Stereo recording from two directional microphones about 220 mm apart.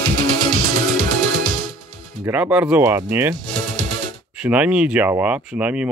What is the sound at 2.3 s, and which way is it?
Speech, 5° right (ahead or behind).